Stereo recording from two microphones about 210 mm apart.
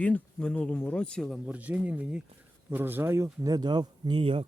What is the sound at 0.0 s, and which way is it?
Speech, 5° left (ahead or behind).